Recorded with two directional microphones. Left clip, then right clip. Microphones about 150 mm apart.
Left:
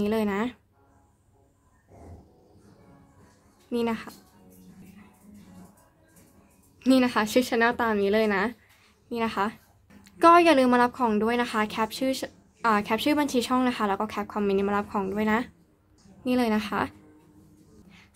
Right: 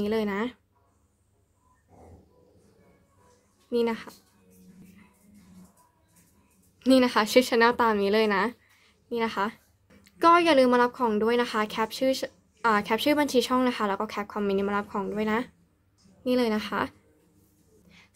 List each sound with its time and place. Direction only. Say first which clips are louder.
0.0 s a woman's voice: left 1 dB; 5° right (ahead or behind)
3.7 s a woman's voice: right 2 dB; 10° right (ahead or behind)
6.8 s a woman's voice: right 1 dB; 15° right (ahead or behind)